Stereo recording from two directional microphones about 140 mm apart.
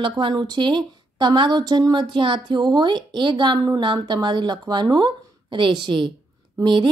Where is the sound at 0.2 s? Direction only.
30° right (ahead or behind).